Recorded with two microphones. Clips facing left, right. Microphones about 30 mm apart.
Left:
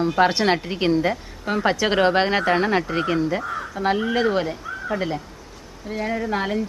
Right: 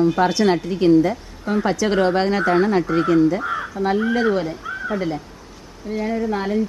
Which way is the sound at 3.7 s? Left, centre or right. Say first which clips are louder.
Right 1 dB; centre.